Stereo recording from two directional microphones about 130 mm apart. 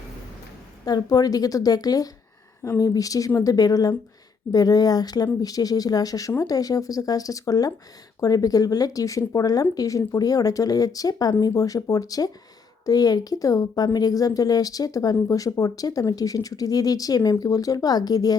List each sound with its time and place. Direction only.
0.9 s speech: 30° left (ahead or behind)